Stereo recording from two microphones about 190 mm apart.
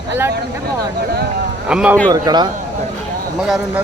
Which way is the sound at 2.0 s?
20° right (ahead or behind).